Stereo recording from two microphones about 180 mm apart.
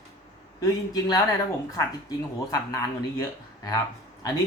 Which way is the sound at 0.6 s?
20° left (ahead or behind).